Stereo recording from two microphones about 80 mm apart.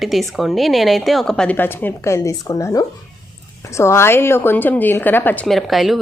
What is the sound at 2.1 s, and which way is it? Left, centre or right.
A woman's voice, left.